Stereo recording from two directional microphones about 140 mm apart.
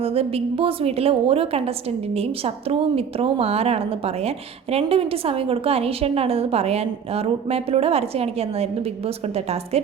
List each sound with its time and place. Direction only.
0.0 s a woman's voice: 45° right (ahead or behind)